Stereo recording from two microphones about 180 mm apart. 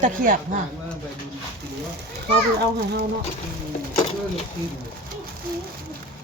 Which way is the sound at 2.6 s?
65° right (ahead or behind).